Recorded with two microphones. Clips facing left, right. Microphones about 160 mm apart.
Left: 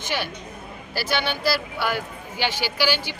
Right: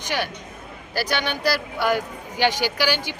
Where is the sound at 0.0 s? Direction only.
15° right (ahead or behind).